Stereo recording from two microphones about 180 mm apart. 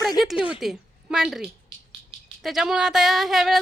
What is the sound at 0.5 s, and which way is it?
A woman's voice, 5° right (ahead or behind).